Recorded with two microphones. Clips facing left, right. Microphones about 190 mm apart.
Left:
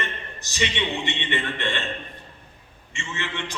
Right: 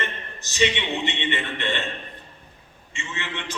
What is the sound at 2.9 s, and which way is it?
Speech, 15° right (ahead or behind).